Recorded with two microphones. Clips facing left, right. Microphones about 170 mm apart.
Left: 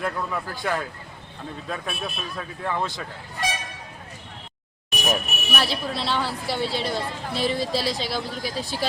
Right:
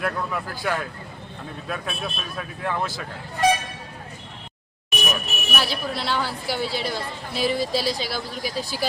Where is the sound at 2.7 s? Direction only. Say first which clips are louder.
Even; centre (ahead or behind).